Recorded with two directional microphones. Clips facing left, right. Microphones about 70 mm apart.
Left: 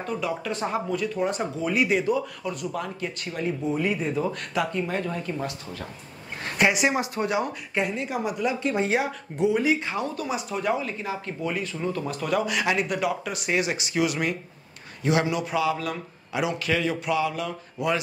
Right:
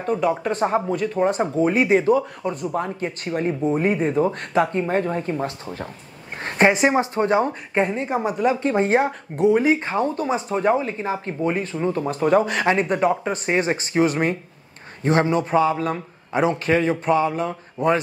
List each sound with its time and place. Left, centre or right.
0.0 s speech: right